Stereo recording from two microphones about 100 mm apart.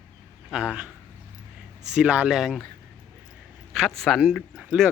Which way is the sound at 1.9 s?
10° right (ahead or behind).